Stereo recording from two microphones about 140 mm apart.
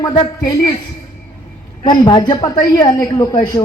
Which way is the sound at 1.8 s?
30° left (ahead or behind).